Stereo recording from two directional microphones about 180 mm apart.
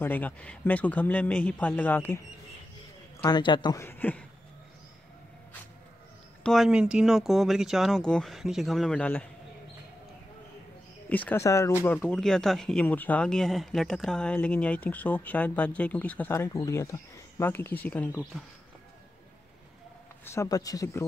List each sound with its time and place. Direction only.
0.0 s speech: 10° left (ahead or behind)
3.2 s speech: 25° left (ahead or behind)
3.8 s a man's voice: 10° left (ahead or behind)
6.4 s speech: centre (ahead or behind)
11.1 s speech: 10° left (ahead or behind)
20.2 s speech: 15° left (ahead or behind)